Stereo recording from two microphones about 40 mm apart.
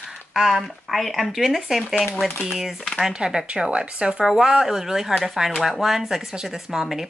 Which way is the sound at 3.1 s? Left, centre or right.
Right.